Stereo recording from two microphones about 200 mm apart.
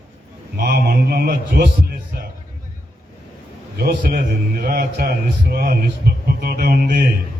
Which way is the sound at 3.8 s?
50° right (ahead or behind).